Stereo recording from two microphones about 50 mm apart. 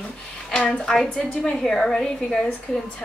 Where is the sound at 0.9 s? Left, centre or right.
Centre.